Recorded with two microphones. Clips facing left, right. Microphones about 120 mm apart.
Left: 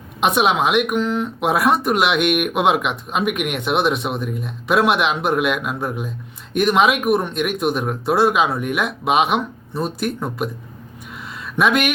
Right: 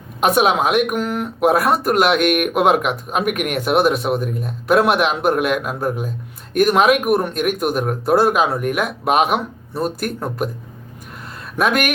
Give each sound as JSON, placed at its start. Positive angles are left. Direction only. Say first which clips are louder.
{"t": 0.2, "sound": "speech", "louder": "right 2 dB", "side_deg": 0}
{"t": 2.2, "sound": "speech", "louder": "right 2 dB", "side_deg": -45}
{"t": 2.5, "sound": "speech", "louder": "right 2 dB", "side_deg": 0}
{"t": 11.5, "sound": "speech", "louder": "even", "side_deg": 0}